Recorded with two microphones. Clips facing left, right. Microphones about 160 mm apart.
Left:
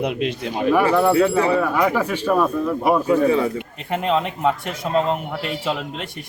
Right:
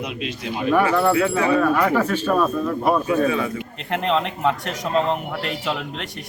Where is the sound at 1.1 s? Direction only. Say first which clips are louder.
Left 2 dB; 30° left (ahead or behind).